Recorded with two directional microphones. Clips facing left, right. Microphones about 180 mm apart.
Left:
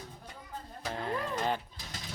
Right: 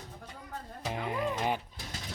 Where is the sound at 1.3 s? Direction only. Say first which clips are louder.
Left 2 dB; 10° right (ahead or behind).